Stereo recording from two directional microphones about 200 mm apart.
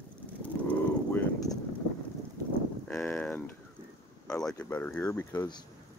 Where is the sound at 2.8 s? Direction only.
5° left (ahead or behind).